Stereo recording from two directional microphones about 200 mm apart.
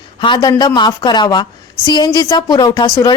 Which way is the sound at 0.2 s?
20° left (ahead or behind).